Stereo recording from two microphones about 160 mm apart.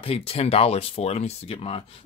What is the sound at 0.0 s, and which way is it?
Speech, 35° left (ahead or behind).